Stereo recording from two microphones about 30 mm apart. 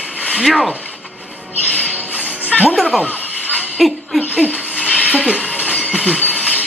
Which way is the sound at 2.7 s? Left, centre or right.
Centre.